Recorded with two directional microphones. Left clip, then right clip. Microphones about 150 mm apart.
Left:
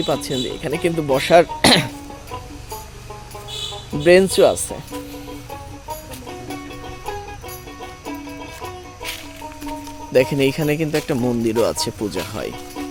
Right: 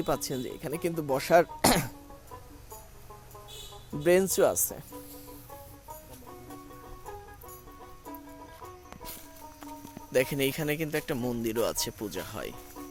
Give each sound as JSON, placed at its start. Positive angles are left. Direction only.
{"t": 0.0, "sound": "speech", "side_deg": -50}
{"t": 4.0, "sound": "speech", "side_deg": -30}
{"t": 9.6, "sound": "speech", "side_deg": -5}